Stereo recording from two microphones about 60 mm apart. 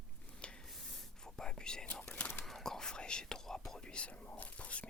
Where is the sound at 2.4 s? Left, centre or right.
Centre.